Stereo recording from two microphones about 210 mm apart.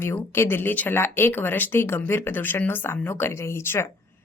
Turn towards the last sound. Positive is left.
turn(degrees=10)  # may be behind; listen again after turning